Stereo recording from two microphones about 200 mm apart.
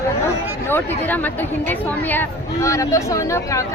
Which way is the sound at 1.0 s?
10° left (ahead or behind).